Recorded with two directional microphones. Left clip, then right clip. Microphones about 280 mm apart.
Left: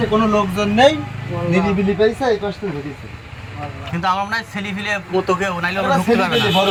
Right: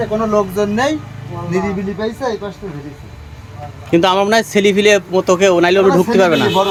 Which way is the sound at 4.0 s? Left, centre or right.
Right.